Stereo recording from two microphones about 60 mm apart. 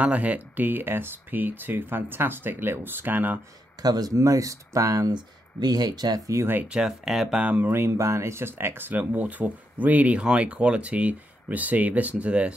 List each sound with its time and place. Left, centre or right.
0.0 s speech: right
3.8 s speech: right
5.7 s speech: right
6.7 s speech: centre
7.3 s speech: right
7.6 s speech: right